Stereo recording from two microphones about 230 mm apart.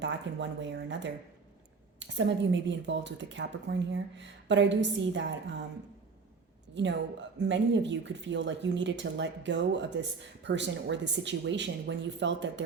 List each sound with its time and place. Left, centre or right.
0.0 s a woman's voice: right
6.7 s a woman's voice: right